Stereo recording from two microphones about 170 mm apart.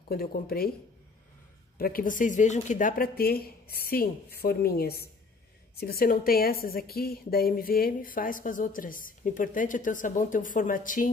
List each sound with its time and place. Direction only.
0.1 s speech: 60° left (ahead or behind)
1.8 s a woman's voice: 55° left (ahead or behind)